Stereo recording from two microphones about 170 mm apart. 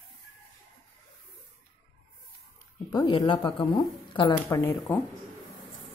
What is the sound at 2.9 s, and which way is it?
Speech, 25° left (ahead or behind).